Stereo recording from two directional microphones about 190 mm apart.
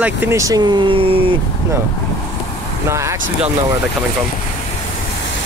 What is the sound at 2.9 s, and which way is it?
Speech, 15° right (ahead or behind).